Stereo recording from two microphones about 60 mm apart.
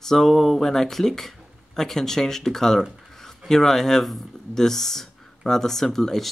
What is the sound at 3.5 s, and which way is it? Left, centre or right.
Speech, centre.